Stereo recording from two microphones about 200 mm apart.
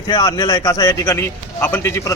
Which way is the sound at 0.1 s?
20° left (ahead or behind).